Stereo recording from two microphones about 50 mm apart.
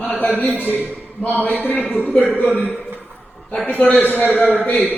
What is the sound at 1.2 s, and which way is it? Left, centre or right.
A man's voice, left.